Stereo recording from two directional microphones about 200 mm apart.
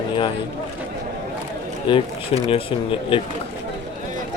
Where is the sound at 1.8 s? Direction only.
25° left (ahead or behind).